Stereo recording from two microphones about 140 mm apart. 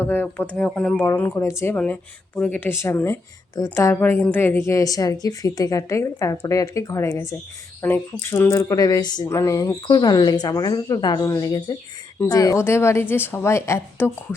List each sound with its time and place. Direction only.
0.0 s speech: 15° left (ahead or behind)
1.7 s speech: 10° left (ahead or behind)